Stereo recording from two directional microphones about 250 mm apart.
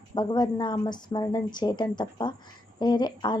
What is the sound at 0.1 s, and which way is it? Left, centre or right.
Speech, centre.